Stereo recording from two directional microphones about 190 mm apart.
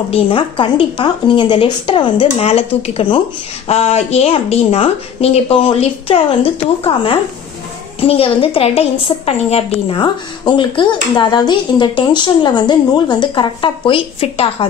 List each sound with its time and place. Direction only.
0.1 s a woman's voice: 25° left (ahead or behind)